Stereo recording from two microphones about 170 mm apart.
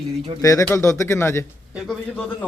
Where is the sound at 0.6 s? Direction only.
15° left (ahead or behind).